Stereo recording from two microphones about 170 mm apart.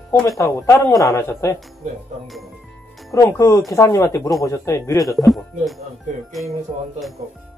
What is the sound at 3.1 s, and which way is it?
Speech, 15° left (ahead or behind).